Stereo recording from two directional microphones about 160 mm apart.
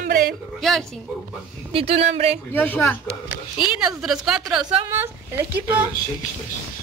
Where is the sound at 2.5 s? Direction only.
10° left (ahead or behind).